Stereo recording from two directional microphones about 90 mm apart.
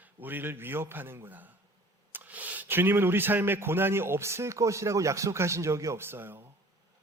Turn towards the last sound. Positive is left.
turn(degrees=-25)  # may be behind; listen again after turning